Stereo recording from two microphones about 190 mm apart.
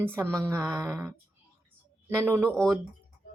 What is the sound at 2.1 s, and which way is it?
Speech, 10° right (ahead or behind).